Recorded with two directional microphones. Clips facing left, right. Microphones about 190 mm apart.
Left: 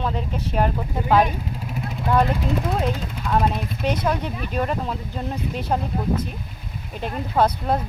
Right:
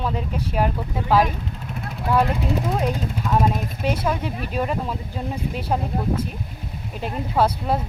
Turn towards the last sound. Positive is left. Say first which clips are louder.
# even
turn(degrees=-5)  # may be behind; listen again after turning